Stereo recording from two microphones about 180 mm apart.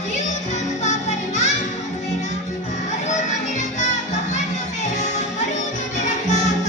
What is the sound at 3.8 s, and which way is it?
Music, 40° left (ahead or behind).